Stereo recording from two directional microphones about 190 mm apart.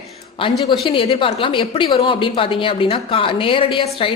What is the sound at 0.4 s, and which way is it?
Speech, 25° left (ahead or behind).